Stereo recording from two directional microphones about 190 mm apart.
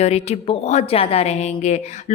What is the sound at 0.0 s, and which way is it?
A woman's voice, 35° left (ahead or behind).